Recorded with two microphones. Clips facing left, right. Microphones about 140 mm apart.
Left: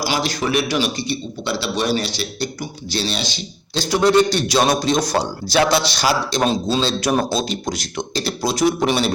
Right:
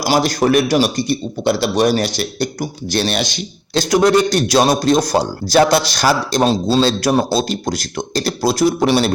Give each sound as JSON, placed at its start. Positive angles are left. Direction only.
{"t": 0.0, "sound": "speech", "side_deg": -45}
{"t": 4.4, "sound": "speech", "side_deg": -40}
{"t": 6.4, "sound": "speech", "side_deg": -35}